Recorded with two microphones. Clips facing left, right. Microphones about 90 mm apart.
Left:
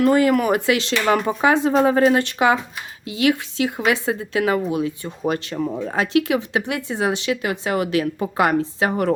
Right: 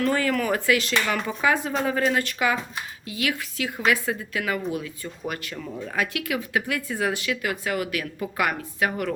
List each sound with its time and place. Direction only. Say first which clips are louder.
0.0 s speech: left 7 dB; 20° left (ahead or behind)
1.0 s speech: left 8 dB; 40° left (ahead or behind)
1.5 s speech: left 6 dB; 20° left (ahead or behind)
1.7 s speech: left 8 dB; 35° left (ahead or behind)
5.5 s speech: left 6 dB; 40° left (ahead or behind)